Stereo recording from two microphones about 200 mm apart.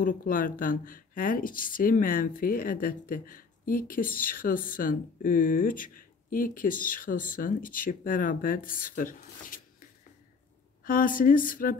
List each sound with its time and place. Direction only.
0.0 s speech: 45° left (ahead or behind)